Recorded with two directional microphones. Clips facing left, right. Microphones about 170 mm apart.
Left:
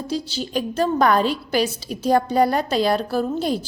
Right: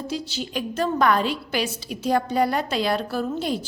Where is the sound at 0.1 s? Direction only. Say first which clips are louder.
Left 7 dB; 35° left (ahead or behind).